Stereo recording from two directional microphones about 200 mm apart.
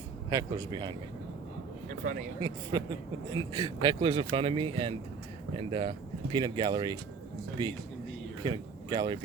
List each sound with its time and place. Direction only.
0.3 s speech: 20° right (ahead or behind)
2.7 s speech: 20° right (ahead or behind)
8.4 s speech: 20° right (ahead or behind)